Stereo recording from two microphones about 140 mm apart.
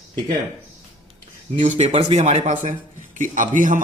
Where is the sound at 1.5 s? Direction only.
60° right (ahead or behind).